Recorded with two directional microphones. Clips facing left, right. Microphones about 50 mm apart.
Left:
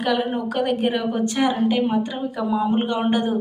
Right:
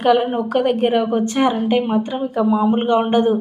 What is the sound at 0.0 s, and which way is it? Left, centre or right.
A woman's voice, right.